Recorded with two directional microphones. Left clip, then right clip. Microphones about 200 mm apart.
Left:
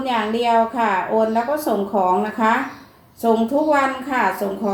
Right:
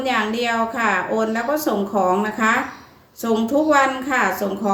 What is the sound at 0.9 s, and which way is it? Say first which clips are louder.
Speech: left 1 dB; 20° right (ahead or behind).